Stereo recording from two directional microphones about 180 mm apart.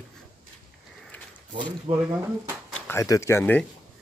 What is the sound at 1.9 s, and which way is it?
Speech, 35° right (ahead or behind).